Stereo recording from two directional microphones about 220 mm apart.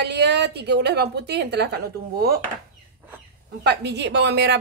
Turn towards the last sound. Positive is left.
turn(degrees=-50)  # may be behind; listen again after turning